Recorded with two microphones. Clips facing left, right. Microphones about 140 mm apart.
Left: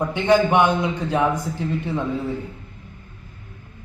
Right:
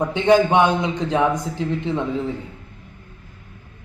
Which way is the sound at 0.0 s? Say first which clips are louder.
Right 2 dB; 20° right (ahead or behind).